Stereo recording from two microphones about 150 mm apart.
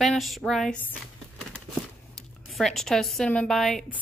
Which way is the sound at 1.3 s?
Centre (ahead or behind).